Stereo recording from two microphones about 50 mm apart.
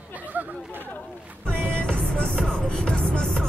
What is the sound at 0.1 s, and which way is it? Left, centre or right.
Chatter, right.